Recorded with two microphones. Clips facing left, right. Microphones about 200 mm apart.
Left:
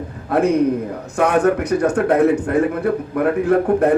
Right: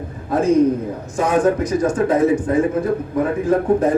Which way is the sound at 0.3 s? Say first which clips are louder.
Right 1 dB; 65° left (ahead or behind).